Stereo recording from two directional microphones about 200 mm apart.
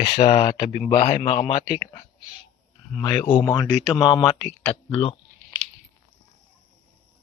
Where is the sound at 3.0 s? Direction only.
20° left (ahead or behind).